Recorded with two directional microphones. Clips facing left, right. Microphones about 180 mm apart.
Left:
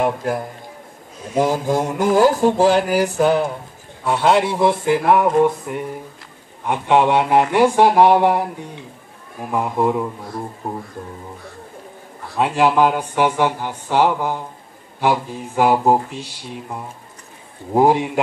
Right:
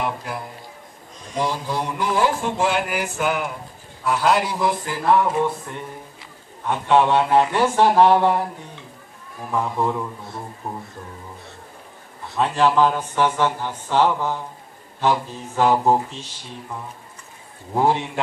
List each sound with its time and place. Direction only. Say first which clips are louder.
0.0 s a man's voice: left 7 dB; 45° left (ahead or behind)
1.4 s mantra: left 6 dB; 45° left (ahead or behind)
4.0 s a man's voice: left 3 dB; 25° left (ahead or behind)
9.5 s a man's voice: left 4 dB; 15° left (ahead or behind)
12.4 s a man's voice: left 2 dB; 15° left (ahead or behind)
17.7 s a man's voice: left 5 dB; 15° left (ahead or behind)